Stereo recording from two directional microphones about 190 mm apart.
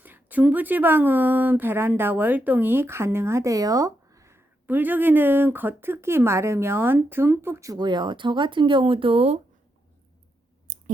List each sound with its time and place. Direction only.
0.0 s speech: 10° right (ahead or behind); by 9.4 s 30° right (ahead or behind)
10.7 s clicking: 45° right (ahead or behind)